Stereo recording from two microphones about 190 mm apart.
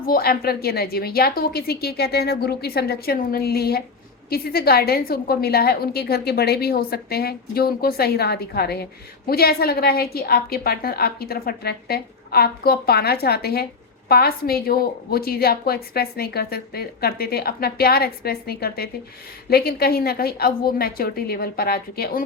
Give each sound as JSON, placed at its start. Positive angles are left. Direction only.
{"t": 0.0, "sound": "a woman's voice", "side_deg": 50}